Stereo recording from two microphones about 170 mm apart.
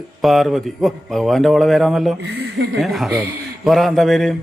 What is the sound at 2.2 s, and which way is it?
Speech, 80° right.